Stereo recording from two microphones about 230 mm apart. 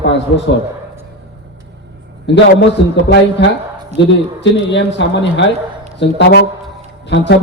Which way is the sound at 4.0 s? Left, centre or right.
Left.